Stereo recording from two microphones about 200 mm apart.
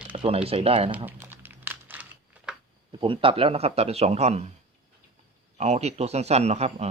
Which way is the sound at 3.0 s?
25° right (ahead or behind).